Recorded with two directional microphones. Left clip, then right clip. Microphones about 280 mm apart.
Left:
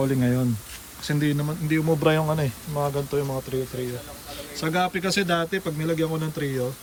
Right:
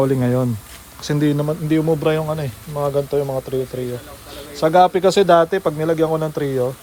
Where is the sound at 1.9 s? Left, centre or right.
Centre.